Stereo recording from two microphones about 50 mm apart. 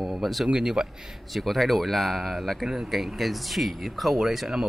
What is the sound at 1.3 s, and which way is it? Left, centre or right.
Speech, centre.